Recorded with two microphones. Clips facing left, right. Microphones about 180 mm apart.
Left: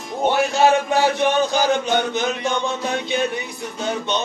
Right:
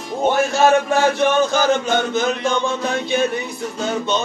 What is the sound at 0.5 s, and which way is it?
A man's voice, 15° left (ahead or behind).